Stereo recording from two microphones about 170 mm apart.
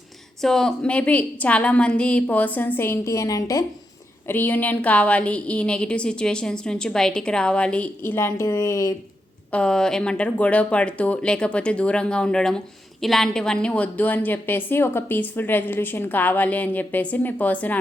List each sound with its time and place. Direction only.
0.4 s speech: 5° left (ahead or behind); by 9.0 s 20° left (ahead or behind)
9.5 s speech: 5° left (ahead or behind)